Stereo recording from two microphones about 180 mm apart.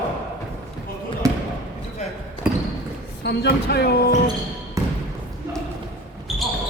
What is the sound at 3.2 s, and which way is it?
Speech, 65° left (ahead or behind).